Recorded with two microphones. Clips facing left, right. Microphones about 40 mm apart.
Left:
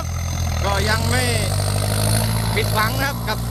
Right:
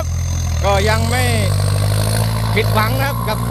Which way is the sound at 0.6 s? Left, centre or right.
Centre.